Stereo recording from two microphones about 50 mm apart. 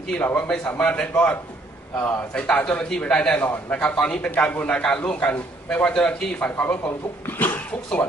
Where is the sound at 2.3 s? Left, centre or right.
Left.